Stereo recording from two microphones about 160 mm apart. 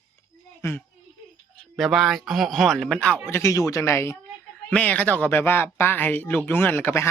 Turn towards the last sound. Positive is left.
turn(degrees=15)  # may be behind; listen again after turning